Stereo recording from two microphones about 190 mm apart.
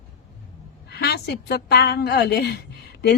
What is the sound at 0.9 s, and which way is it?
A woman's voice, 60° left (ahead or behind).